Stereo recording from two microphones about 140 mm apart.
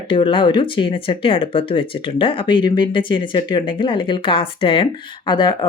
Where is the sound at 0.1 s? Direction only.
40° left (ahead or behind).